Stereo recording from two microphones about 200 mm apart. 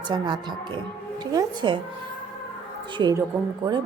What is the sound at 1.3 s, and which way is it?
Speech, 20° right (ahead or behind).